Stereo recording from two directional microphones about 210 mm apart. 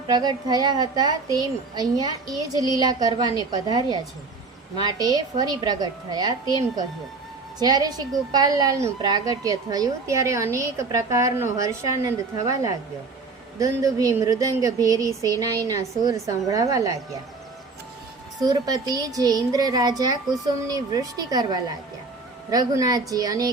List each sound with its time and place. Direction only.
0.1 s a woman's voice: 20° right (ahead or behind)
7.6 s a woman's voice: 20° right (ahead or behind)
18.3 s speech: 20° right (ahead or behind)